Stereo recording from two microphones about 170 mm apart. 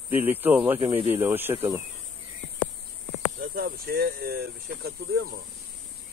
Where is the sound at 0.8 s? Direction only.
35° right (ahead or behind).